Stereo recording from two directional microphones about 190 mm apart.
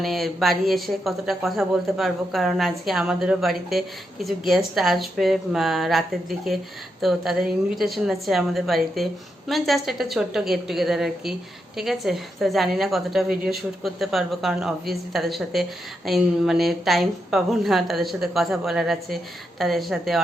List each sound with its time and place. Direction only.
0.0 s speech: centre (ahead or behind)